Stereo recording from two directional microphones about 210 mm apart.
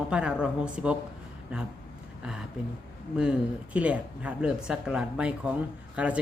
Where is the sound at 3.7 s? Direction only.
5° right (ahead or behind).